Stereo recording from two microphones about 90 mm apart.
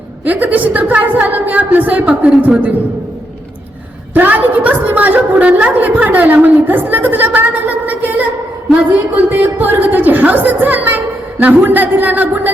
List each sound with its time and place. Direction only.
0.3 s a woman's voice: 20° right (ahead or behind)
4.1 s a woman's voice: 20° right (ahead or behind)
9.3 s a woman's voice: 20° right (ahead or behind)